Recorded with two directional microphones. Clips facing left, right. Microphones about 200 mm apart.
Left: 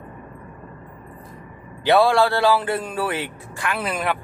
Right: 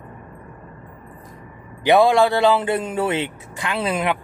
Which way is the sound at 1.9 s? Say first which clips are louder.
Right 2 dB; 20° right (ahead or behind).